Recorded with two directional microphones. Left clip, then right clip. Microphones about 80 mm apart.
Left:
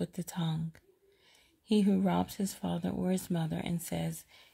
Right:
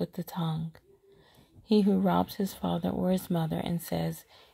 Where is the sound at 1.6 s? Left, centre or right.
Right.